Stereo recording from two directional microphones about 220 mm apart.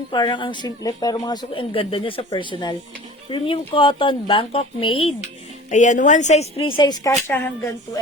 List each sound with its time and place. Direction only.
0.1 s a woman's voice: 20° left (ahead or behind)
6.7 s speech: 20° left (ahead or behind)